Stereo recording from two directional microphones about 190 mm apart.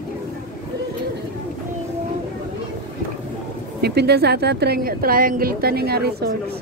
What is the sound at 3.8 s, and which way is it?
A woman's voice, 60° right (ahead or behind).